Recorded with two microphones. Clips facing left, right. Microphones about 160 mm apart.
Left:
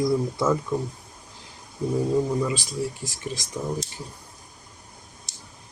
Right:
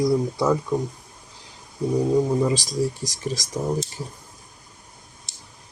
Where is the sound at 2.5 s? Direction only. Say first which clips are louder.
Right 5 dB; 40° right (ahead or behind).